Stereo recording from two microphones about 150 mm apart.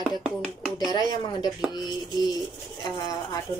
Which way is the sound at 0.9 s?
30° left (ahead or behind).